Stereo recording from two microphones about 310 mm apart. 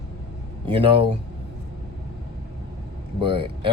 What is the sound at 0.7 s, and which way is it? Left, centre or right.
Speech, centre.